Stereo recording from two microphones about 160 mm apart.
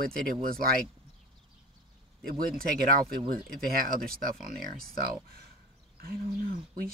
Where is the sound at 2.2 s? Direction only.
65° right (ahead or behind).